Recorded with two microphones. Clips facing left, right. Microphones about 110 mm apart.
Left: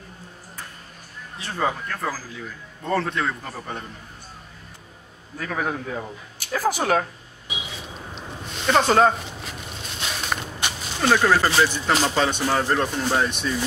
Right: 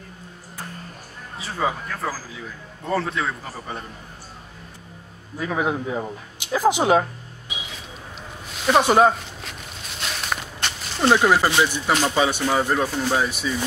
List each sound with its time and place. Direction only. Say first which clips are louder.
1.4 s speech: even; 5° right (ahead or behind)
5.4 s speech: right 3 dB; 15° right (ahead or behind)
8.5 s speech: right 1 dB; 5° right (ahead or behind)
9.4 s a sound: left 2 dB; centre (ahead or behind)
10.6 s a sound: even; 10° left (ahead or behind)
11.0 s speech: right 2 dB; 15° right (ahead or behind)
11.9 s speech: right 1 dB; 5° left (ahead or behind)